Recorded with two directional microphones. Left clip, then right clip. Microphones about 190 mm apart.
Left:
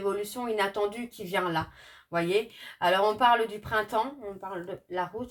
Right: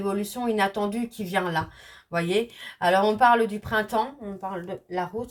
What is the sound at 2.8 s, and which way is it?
Speech, 25° left (ahead or behind).